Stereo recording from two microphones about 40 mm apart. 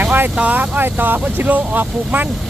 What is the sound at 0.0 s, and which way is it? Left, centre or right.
Vehicle, right.